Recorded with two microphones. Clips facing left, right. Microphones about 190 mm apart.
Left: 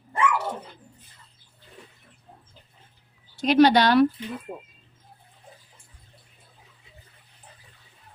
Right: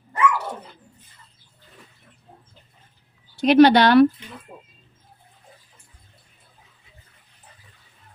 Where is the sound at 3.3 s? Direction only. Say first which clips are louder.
Right 4 dB; 65° right (ahead or behind).